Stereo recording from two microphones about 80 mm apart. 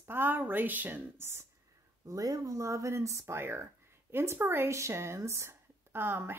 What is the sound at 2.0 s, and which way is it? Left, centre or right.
Speech, right.